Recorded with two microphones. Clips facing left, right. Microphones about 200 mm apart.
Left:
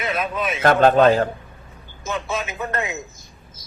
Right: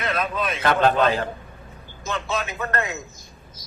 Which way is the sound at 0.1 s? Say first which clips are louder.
Even; 10° left (ahead or behind).